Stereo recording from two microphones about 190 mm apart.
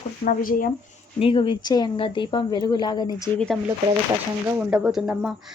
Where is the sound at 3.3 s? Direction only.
5° left (ahead or behind).